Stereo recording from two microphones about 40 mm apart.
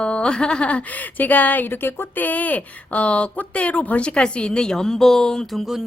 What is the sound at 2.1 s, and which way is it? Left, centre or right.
Speech, left.